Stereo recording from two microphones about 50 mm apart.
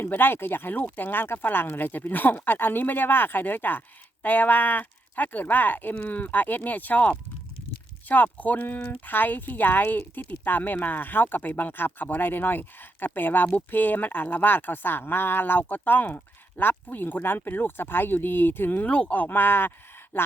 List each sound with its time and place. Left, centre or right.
0.0 s speech: left
18.9 s speech: left